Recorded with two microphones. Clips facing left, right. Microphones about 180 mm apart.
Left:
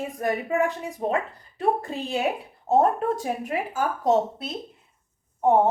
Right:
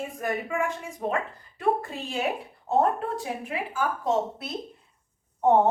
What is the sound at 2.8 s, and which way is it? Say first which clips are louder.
A woman's voice: left 2 dB; 45° left (ahead or behind).